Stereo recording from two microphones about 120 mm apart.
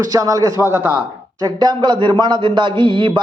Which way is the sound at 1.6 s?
40° right (ahead or behind).